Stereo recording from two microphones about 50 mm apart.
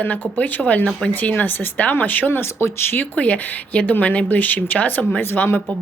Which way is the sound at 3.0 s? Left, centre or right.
Left.